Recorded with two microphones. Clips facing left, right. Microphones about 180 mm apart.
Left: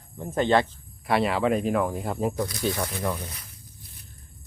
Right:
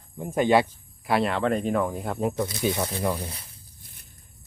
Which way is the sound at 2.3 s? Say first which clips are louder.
Right 1 dB; 25° right (ahead or behind).